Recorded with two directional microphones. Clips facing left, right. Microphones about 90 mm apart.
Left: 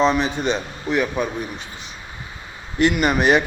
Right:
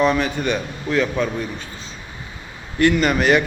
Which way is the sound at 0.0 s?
20° left (ahead or behind).